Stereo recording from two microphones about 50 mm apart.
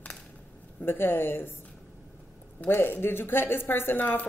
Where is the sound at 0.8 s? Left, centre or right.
Left.